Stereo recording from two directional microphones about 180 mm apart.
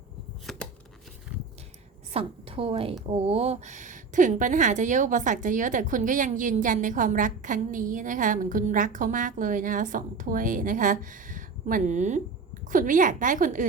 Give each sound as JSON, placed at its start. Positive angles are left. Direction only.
{"t": 0.5, "sound": "chopping", "side_deg": 0}
{"t": 2.1, "sound": "a woman's voice", "side_deg": -30}